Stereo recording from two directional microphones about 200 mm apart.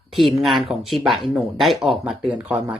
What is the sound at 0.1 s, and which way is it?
Speech, centre (ahead or behind).